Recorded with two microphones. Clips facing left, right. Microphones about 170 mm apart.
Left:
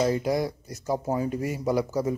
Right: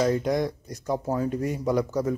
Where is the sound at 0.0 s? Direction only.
5° left (ahead or behind).